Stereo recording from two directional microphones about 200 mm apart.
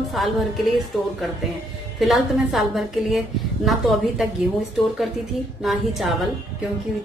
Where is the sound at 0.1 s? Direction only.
Centre (ahead or behind).